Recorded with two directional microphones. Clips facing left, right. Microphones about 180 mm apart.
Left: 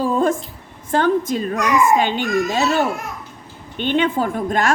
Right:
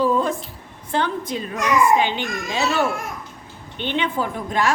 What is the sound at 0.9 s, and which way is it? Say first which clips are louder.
A child's voice: left 6 dB; 45° left (ahead or behind).